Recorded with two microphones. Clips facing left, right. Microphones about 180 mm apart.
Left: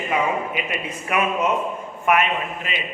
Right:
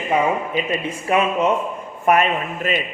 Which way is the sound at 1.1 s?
30° right (ahead or behind).